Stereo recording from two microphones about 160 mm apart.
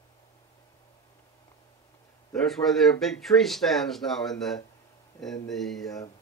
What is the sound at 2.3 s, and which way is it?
Speech, centre (ahead or behind).